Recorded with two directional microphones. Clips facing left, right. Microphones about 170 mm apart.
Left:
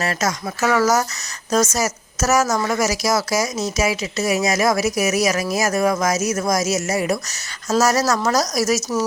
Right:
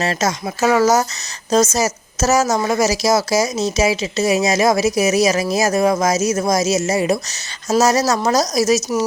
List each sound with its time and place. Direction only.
0.0 s a woman's voice: 25° right (ahead or behind)